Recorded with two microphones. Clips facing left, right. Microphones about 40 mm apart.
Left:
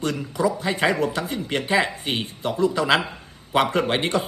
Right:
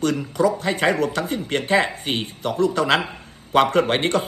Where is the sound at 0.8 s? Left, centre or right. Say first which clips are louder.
Right 1 dB; right.